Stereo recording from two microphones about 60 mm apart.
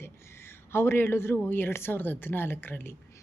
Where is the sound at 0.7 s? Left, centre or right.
Left.